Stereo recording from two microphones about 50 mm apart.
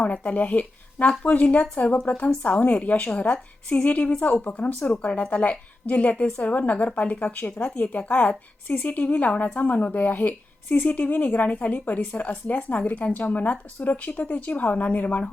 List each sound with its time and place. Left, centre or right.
0.0 s a woman's voice: left